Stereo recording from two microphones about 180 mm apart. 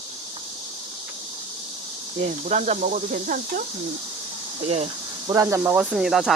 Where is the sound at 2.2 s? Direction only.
40° right (ahead or behind).